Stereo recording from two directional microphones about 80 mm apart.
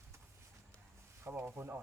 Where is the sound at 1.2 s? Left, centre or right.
Right.